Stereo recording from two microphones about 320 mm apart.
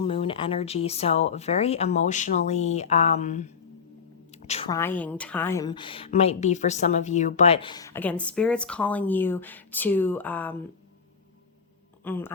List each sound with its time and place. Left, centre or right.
0.0 s a woman's voice: centre
12.0 s a woman's voice: centre